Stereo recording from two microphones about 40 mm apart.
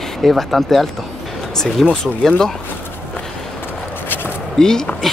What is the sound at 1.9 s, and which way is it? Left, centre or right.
Speech, centre.